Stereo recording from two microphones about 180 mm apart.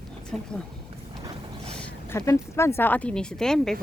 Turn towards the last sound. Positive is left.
turn(degrees=5)  # may be behind; listen again after turning